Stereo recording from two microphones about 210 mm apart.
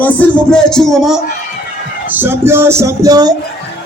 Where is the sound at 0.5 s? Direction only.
Centre (ahead or behind); by 3.3 s 20° right (ahead or behind).